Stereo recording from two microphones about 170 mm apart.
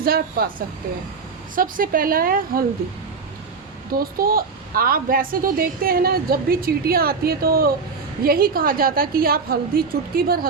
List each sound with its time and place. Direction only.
0.0 s speech: 60° right (ahead or behind)
1.5 s speech: 55° right (ahead or behind)
3.9 s speech: 60° right (ahead or behind)